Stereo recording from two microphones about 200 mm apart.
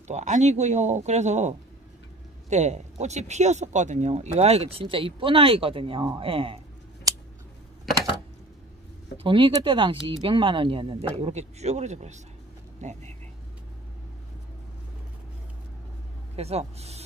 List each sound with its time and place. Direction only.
0.1 s speech: 35° right (ahead or behind)
2.5 s speech: 35° right (ahead or behind)
9.2 s speech: 25° right (ahead or behind)
16.3 s speech: 30° right (ahead or behind)